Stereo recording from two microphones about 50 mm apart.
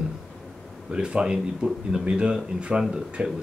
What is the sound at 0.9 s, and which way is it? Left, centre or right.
Speech, centre.